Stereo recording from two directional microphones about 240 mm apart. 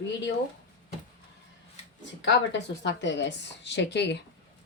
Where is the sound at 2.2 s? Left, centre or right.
Left.